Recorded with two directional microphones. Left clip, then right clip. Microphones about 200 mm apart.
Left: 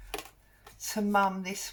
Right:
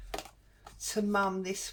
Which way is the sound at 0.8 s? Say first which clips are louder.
Left 3 dB; 35° right (ahead or behind).